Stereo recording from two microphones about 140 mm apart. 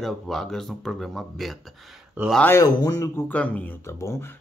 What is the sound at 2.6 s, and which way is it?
Speech, 25° left (ahead or behind).